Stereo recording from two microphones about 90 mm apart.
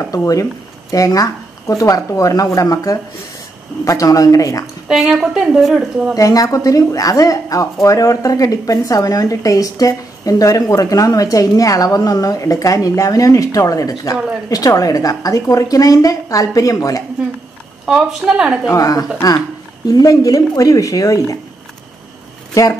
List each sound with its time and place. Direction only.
0.0 s speech: 35° left (ahead or behind)
4.8 s a woman's voice: 5° right (ahead or behind)
6.1 s speech: 40° left (ahead or behind)
17.8 s a woman's voice: 10° right (ahead or behind)
18.7 s a woman's voice: 40° left (ahead or behind)
22.5 s speech: 40° left (ahead or behind)